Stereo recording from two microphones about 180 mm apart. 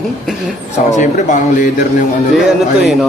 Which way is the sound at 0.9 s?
45° left (ahead or behind).